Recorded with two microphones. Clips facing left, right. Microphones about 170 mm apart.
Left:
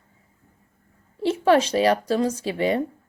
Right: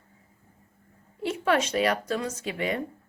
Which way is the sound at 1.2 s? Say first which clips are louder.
Left 7 dB; 30° left (ahead or behind).